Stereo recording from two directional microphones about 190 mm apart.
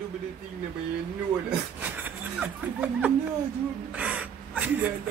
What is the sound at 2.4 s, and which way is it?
Speech, 10° right (ahead or behind).